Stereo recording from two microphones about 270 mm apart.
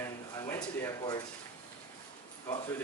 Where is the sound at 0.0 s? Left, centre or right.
Centre.